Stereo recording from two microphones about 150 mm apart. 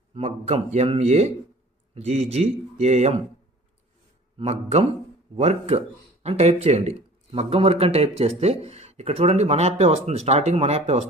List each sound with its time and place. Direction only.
0.1 s speech: 45° right (ahead or behind)
4.4 s speech: 45° right (ahead or behind)